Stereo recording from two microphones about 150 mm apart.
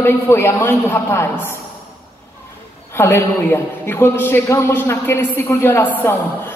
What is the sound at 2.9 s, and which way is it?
A man's voice, 15° left (ahead or behind).